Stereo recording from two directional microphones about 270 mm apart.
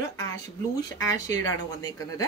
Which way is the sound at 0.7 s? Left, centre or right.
Centre.